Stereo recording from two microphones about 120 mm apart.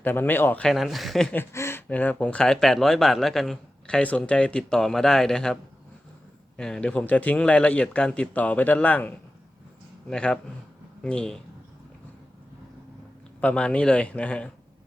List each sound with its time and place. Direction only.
0.0 s a man's voice: 15° left (ahead or behind)
0.7 s speech: centre (ahead or behind)
1.3 s speech: 20° left (ahead or behind)
6.6 s a man's voice: 5° left (ahead or behind)
13.4 s a man's voice: 10° left (ahead or behind)